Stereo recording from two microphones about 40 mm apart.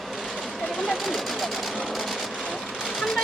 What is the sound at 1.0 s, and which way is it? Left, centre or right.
Vehicle, centre.